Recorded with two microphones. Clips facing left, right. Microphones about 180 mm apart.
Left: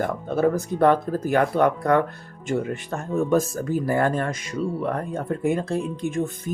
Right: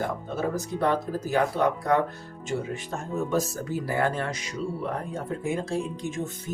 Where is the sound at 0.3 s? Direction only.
55° left (ahead or behind).